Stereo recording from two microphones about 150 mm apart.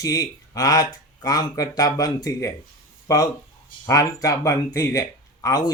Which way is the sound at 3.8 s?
20° left (ahead or behind).